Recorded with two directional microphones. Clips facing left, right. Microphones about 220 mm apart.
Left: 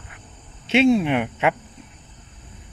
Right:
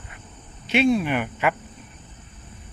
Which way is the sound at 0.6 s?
25° left (ahead or behind).